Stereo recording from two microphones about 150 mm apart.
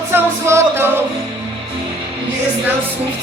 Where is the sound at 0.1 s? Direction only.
15° right (ahead or behind).